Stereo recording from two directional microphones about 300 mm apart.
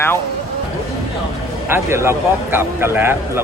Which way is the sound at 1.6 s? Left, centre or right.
Centre.